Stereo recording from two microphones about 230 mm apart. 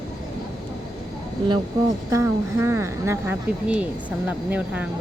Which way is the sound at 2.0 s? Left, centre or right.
Centre.